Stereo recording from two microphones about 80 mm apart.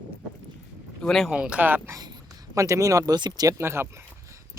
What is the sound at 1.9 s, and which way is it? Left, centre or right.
Speech, right.